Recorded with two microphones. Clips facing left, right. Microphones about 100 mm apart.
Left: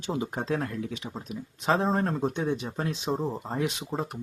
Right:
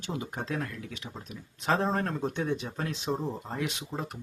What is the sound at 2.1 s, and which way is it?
Speech, 30° left (ahead or behind).